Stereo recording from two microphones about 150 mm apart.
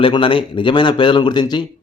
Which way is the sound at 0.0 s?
35° left (ahead or behind).